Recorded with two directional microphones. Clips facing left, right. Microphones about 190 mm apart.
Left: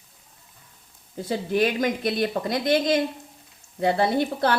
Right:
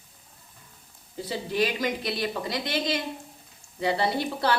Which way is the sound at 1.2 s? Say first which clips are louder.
Left 4 dB; 50° left (ahead or behind).